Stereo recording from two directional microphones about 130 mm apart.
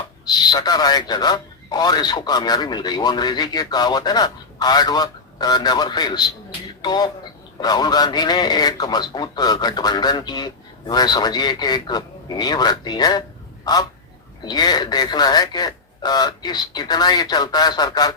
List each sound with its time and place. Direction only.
0.3 s speech: 35° left (ahead or behind)
14.4 s speech: 30° left (ahead or behind)